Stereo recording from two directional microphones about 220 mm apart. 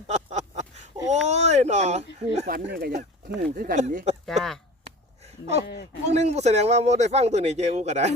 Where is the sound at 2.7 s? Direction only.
45° right (ahead or behind).